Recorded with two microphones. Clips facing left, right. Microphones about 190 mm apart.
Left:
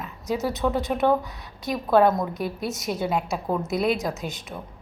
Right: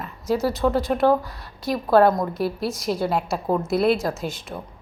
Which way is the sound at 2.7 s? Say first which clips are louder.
Right 2 dB; 20° left (ahead or behind).